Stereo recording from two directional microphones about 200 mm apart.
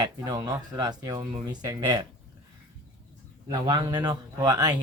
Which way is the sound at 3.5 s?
20° right (ahead or behind).